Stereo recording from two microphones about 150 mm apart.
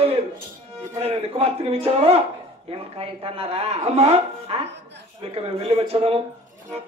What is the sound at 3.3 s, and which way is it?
Speech, 45° right (ahead or behind).